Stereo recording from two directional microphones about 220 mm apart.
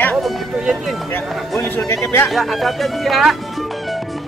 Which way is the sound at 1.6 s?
10° left (ahead or behind).